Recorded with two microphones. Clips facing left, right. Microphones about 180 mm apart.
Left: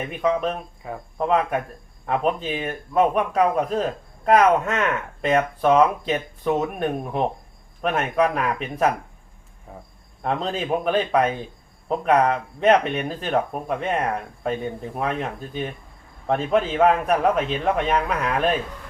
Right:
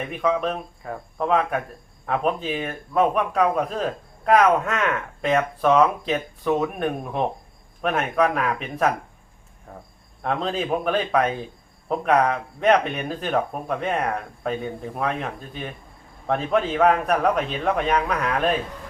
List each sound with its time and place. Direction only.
0.1 s speech: centre (ahead or behind)